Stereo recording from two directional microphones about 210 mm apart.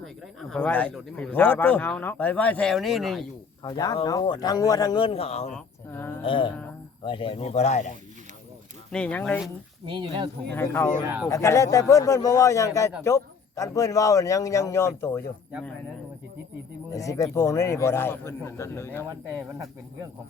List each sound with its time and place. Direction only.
0.5 s a man's voice: 5° left (ahead or behind)
3.6 s speech: 20° left (ahead or behind)
5.5 s a man's voice: 5° left (ahead or behind)
6.2 s speech: 25° left (ahead or behind)
8.9 s speech: 5° left (ahead or behind)
9.9 s speech: 20° right (ahead or behind)
10.5 s a man's voice: 10° left (ahead or behind)
16.9 s a man's voice: 15° left (ahead or behind)